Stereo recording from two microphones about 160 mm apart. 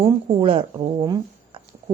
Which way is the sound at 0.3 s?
35° right (ahead or behind).